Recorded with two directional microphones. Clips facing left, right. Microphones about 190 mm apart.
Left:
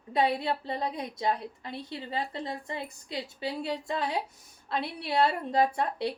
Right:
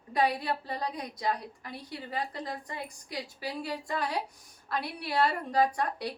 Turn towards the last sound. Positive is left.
turn(degrees=25)  # may be behind; listen again after turning